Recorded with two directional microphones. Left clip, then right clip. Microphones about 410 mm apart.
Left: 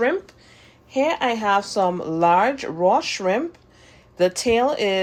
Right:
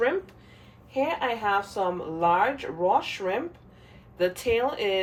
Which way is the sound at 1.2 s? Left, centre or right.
Centre.